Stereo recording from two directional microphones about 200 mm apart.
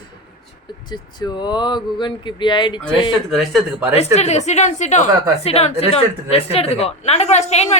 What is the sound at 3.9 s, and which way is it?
A woman's voice, 30° left (ahead or behind).